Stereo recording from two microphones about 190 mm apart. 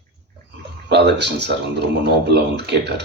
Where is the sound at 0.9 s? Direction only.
60° right (ahead or behind).